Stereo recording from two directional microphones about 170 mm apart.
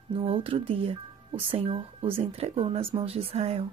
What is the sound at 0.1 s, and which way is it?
Speech, 35° right (ahead or behind).